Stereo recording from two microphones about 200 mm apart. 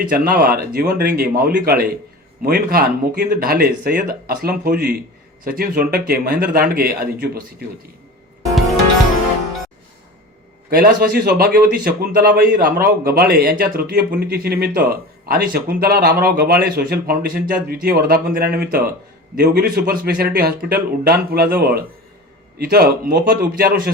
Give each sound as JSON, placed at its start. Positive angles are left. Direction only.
{"t": 0.3, "sound": "speech", "side_deg": -45}
{"t": 10.7, "sound": "speech", "side_deg": -45}